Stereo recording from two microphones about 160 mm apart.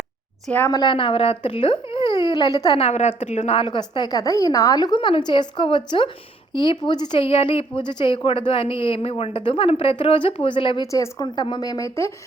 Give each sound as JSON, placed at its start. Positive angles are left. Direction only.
{"t": 0.4, "sound": "a woman's voice", "side_deg": 10}
{"t": 0.7, "sound": "speech", "side_deg": 30}
{"t": 2.7, "sound": "a woman's voice", "side_deg": 40}